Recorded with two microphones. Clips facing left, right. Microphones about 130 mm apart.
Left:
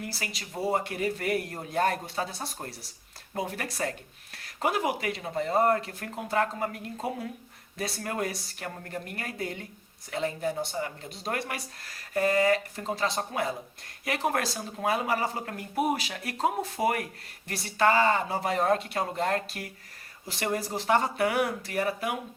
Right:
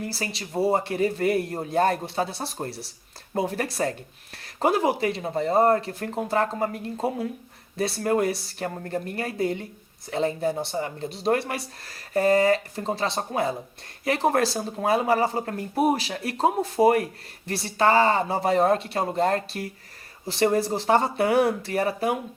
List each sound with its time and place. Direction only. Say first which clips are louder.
0.0 s a man's voice: right 6 dB; 30° right (ahead or behind)